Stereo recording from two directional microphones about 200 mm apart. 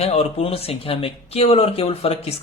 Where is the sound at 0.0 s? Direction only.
30° left (ahead or behind).